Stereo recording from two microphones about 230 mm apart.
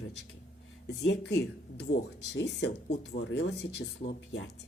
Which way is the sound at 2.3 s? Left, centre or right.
Left.